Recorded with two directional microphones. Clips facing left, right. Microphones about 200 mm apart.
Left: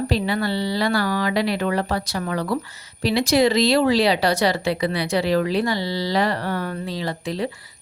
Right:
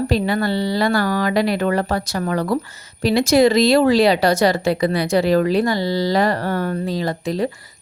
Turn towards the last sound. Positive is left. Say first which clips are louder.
# right 5 dB
turn(degrees=-45)  # may be behind; listen again after turning